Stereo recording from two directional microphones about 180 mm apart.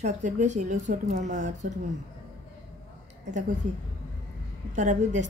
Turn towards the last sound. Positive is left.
turn(degrees=-40)  # may be behind; listen again after turning